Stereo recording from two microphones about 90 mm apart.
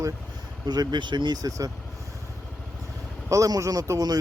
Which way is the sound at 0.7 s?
55° right (ahead or behind).